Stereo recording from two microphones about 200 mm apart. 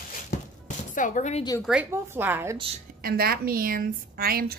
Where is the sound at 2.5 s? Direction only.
25° right (ahead or behind).